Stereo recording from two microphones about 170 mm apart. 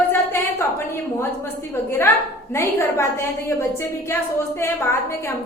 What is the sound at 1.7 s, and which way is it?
A woman's voice, 15° left (ahead or behind).